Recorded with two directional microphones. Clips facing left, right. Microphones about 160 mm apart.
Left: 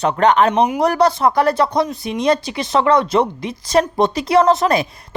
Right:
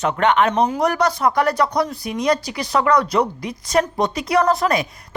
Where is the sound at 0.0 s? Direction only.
35° left (ahead or behind).